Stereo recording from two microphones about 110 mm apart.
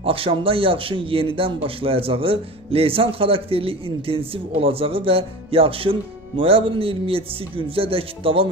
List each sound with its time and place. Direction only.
0.0 s a man's voice: 55° right (ahead or behind)